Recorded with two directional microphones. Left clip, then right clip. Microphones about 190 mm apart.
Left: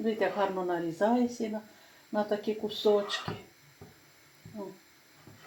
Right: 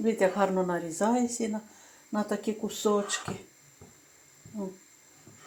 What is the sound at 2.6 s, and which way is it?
Speech, 40° right (ahead or behind).